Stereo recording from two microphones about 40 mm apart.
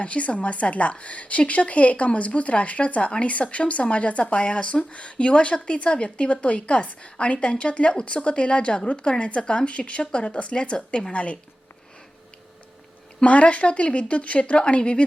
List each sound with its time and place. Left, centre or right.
0.0 s a woman's voice: left
13.2 s a woman's voice: left